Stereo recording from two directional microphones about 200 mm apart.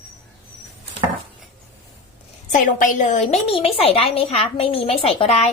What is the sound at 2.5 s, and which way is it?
A woman's voice, 40° left (ahead or behind).